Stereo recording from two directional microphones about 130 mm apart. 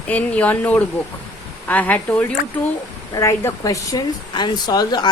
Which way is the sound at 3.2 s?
25° left (ahead or behind).